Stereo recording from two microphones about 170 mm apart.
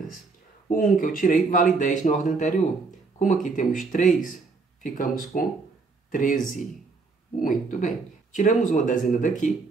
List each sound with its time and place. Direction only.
0.7 s speech: 55° left (ahead or behind)